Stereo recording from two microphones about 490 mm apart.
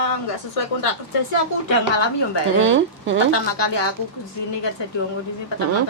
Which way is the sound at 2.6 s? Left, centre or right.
Right.